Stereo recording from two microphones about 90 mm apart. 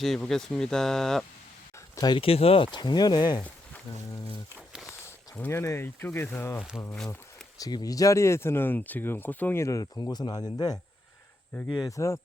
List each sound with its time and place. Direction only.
0.0 s speech: 5° left (ahead or behind)
2.1 s speech: 90° left
2.8 s speech: 50° left (ahead or behind)
5.5 s speech: 30° left (ahead or behind)
7.6 s speech: 45° left (ahead or behind); by 9.6 s 20° left (ahead or behind)
9.6 s speech: 35° left (ahead or behind)
9.8 s speech: 50° left (ahead or behind)
11.9 s speech: 35° left (ahead or behind)